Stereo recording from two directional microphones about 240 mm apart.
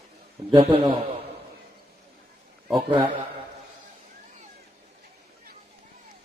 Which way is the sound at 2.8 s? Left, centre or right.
Right.